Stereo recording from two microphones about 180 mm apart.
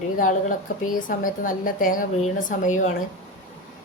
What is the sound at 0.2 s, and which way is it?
A woman's voice, 45° left (ahead or behind).